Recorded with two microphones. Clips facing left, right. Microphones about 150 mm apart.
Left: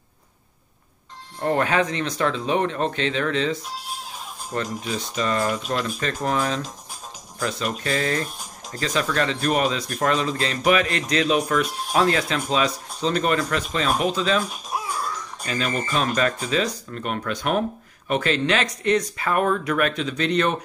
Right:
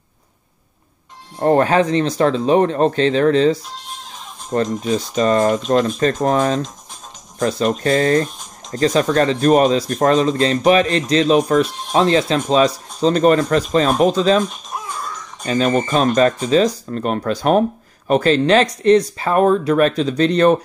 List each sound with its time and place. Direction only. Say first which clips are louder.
1.4 s speech: right 7 dB; 35° right (ahead or behind)
3.7 s chicken: even; 5° left (ahead or behind)
4.5 s speech: right 9 dB; 40° right (ahead or behind)
14.4 s music: right 4 dB; 5° left (ahead or behind)
15.4 s speech: right 10 dB; 35° right (ahead or behind)